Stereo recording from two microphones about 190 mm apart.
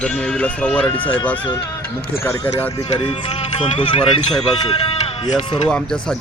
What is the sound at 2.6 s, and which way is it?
Speech, 20° left (ahead or behind).